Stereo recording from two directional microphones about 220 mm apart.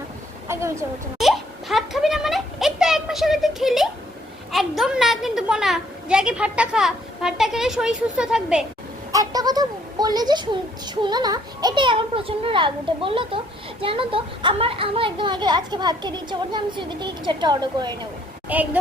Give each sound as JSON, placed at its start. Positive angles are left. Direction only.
{"t": 0.4, "sound": "a woman's voice", "side_deg": -10}
{"t": 1.2, "sound": "a child's voice", "side_deg": 0}
{"t": 9.1, "sound": "speech", "side_deg": -15}
{"t": 18.4, "sound": "speech", "side_deg": -5}